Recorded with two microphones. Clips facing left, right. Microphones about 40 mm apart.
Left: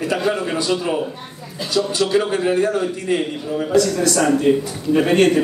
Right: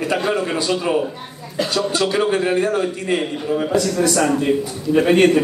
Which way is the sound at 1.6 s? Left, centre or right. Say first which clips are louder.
Even; right.